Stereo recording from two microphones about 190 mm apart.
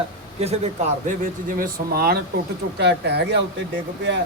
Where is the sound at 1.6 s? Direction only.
55° right (ahead or behind).